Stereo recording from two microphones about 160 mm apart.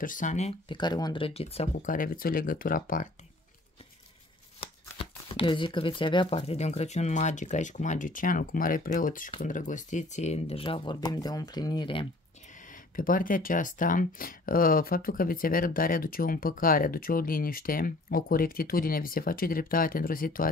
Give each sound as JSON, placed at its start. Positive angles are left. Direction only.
{"t": 0.0, "sound": "speech", "side_deg": 55}
{"t": 0.7, "sound": "speech", "side_deg": 25}
{"t": 1.8, "sound": "speech", "side_deg": 60}
{"t": 4.9, "sound": "speech", "side_deg": 35}
{"t": 12.9, "sound": "speech", "side_deg": 60}